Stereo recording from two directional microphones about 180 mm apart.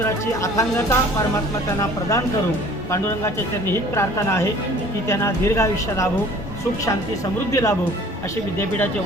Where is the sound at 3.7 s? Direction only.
15° left (ahead or behind).